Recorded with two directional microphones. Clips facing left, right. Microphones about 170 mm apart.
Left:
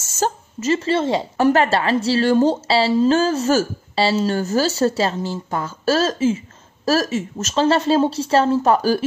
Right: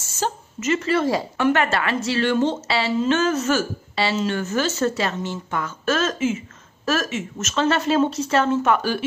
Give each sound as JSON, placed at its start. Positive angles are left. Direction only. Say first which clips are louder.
{"t": 0.0, "sound": "a woman's voice", "louder": "left 4 dB", "side_deg": 45}